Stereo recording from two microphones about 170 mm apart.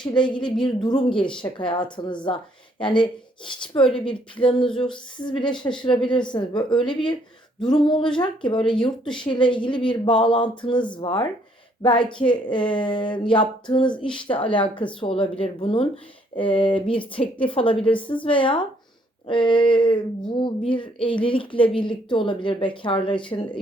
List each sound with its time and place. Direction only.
0.0 s speech: 25° left (ahead or behind)
3.8 s speech: 5° left (ahead or behind)
4.4 s speech: 30° left (ahead or behind)